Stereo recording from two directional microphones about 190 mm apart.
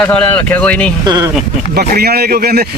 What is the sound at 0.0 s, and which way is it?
Speech, 5° left (ahead or behind).